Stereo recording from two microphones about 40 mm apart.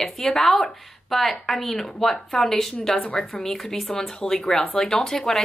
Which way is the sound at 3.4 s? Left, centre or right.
Centre.